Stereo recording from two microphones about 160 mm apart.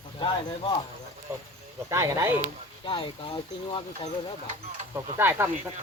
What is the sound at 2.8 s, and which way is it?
Speech, 30° left (ahead or behind).